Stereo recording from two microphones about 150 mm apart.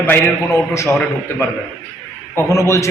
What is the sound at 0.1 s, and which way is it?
Speech, 20° left (ahead or behind).